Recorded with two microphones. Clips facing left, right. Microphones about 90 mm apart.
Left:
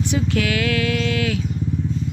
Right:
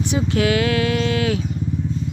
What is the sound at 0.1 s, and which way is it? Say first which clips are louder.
Speech: right 4 dB; 30° right (ahead or behind).